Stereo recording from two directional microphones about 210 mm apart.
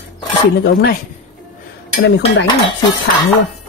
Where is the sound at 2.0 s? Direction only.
50° left (ahead or behind).